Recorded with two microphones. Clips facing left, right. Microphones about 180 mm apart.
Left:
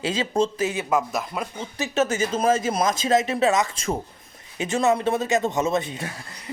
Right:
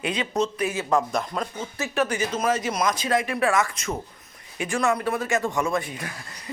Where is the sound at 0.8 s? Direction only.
5° left (ahead or behind); by 6.2 s 25° left (ahead or behind).